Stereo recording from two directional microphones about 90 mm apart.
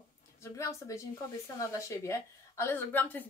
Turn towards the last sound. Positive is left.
turn(degrees=20)  # may be behind; listen again after turning